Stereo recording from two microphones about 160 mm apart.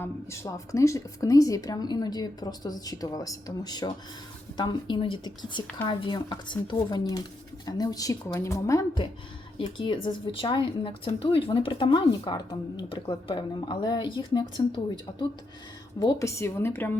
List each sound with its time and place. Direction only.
0.0 s speech: 15° left (ahead or behind)
9.0 s a woman's voice: 30° left (ahead or behind)
16.0 s a woman's voice: 20° left (ahead or behind)